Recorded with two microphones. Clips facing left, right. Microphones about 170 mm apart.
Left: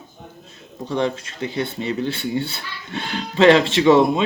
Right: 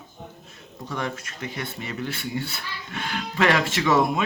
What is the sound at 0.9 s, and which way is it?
Speech, 25° left (ahead or behind).